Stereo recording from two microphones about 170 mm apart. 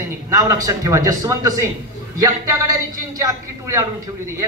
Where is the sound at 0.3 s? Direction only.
20° right (ahead or behind).